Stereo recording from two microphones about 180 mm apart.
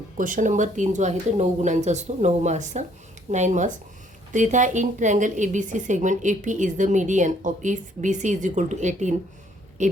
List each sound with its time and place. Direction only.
0.2 s a woman's voice: 45° right (ahead or behind)